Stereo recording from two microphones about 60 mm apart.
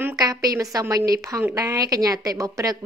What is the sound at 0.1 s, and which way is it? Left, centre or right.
A woman's voice, right.